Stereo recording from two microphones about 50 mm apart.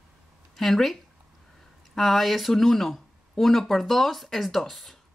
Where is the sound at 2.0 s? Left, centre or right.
Centre.